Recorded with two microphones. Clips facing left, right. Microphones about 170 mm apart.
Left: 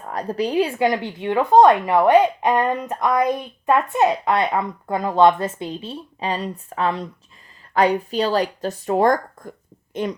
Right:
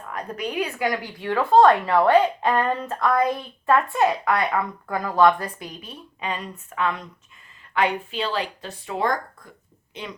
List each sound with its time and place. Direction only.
0.0 s speech: 35° left (ahead or behind)